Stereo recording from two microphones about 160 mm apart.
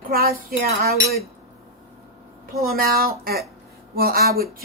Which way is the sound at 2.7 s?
65° right (ahead or behind).